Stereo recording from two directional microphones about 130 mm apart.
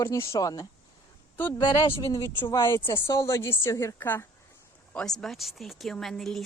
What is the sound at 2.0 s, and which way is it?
A woman's voice, 20° left (ahead or behind).